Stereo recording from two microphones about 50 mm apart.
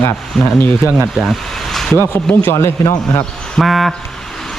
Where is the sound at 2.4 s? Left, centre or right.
Left.